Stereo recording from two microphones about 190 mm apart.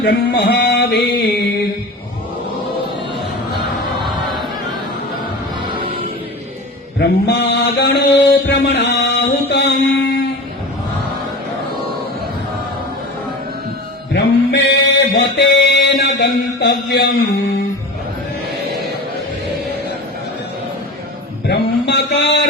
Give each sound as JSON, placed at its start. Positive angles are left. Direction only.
{"t": 0.0, "sound": "mantra", "side_deg": 65}
{"t": 7.0, "sound": "mantra", "side_deg": 65}
{"t": 14.1, "sound": "mantra", "side_deg": 65}
{"t": 21.4, "sound": "a sound", "side_deg": 60}